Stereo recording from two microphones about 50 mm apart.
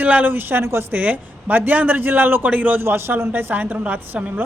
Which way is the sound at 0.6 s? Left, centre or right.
Right.